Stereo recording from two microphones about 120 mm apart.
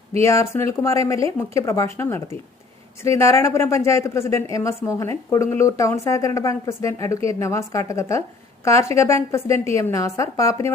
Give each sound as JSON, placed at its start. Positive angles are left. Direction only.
{"t": 0.2, "sound": "speech", "side_deg": 25}